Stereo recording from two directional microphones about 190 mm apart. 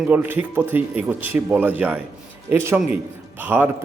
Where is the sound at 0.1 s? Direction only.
10° right (ahead or behind).